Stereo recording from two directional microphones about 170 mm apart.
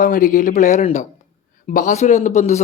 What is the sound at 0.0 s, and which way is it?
Speech, 50° left (ahead or behind).